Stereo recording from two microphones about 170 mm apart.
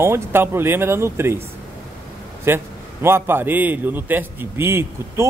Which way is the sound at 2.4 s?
15° right (ahead or behind).